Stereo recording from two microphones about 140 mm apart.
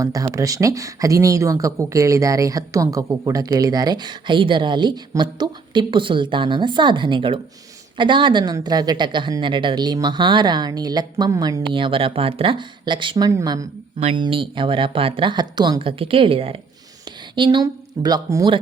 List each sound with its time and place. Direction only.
0.0 s speech: 25° right (ahead or behind)
11.7 s speech: 40° right (ahead or behind)
14.0 s speech: 40° right (ahead or behind)